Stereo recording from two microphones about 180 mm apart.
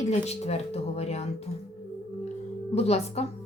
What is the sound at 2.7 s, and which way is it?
Speech, 35° left (ahead or behind).